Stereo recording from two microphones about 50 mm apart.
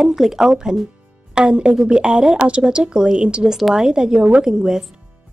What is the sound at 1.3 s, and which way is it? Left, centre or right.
Speech, right.